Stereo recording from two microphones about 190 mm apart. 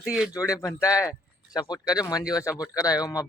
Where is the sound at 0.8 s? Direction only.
5° right (ahead or behind).